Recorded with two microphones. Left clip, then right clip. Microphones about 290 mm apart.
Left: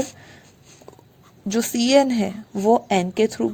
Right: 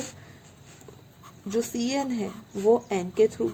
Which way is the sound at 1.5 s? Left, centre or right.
Left.